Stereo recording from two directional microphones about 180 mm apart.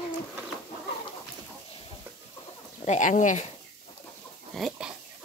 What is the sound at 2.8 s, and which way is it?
Speech, 45° left (ahead or behind).